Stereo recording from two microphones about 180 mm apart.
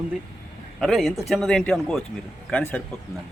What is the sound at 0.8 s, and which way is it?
Speech, centre (ahead or behind).